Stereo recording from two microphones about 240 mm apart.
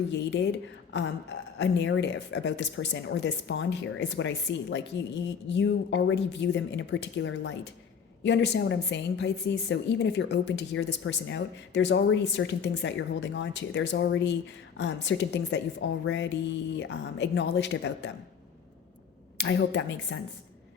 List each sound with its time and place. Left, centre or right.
0.1 s a woman's voice: left
1.5 s a woman's voice: left
19.4 s a woman's voice: left